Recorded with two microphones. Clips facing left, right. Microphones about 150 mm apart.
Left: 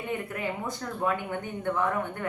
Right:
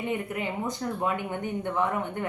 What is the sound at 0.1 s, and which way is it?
Speech, 20° right (ahead or behind).